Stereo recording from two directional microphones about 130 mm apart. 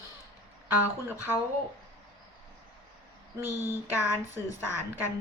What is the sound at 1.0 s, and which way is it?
Speech, 15° right (ahead or behind).